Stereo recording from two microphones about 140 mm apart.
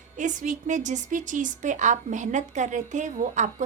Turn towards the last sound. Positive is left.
turn(degrees=-60)  # may be behind; listen again after turning